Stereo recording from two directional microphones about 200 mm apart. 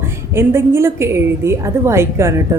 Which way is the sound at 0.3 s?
10° right (ahead or behind).